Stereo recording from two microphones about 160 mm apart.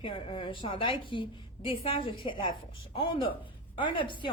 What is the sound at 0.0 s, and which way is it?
A woman's voice, 30° left (ahead or behind).